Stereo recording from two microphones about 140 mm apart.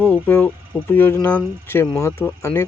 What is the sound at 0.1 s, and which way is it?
Speech, 10° left (ahead or behind).